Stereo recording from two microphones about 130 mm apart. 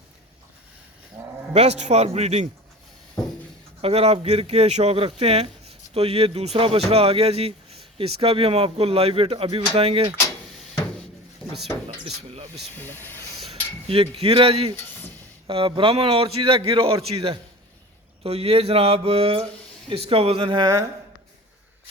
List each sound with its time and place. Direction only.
1.5 s a man's voice: 55° right (ahead or behind)
3.8 s speech: 50° right (ahead or behind)
12.7 s speech: 15° left (ahead or behind)
13.5 s a sound: 45° right (ahead or behind)
15.4 s speech: 45° right (ahead or behind)